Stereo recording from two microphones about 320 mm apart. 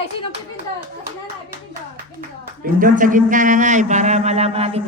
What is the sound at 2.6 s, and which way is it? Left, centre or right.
Speech, right.